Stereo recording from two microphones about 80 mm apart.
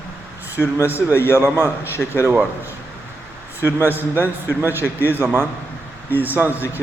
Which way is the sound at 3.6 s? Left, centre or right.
Right.